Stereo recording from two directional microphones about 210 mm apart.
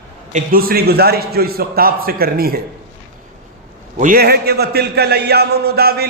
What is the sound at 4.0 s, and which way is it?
A man's voice, 45° right (ahead or behind).